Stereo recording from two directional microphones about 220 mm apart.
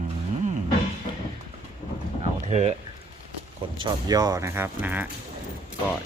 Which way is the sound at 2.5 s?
30° right (ahead or behind).